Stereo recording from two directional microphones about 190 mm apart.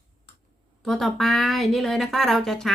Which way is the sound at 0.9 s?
Centre (ahead or behind).